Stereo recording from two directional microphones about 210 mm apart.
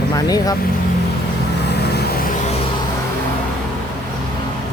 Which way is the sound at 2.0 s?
45° left (ahead or behind).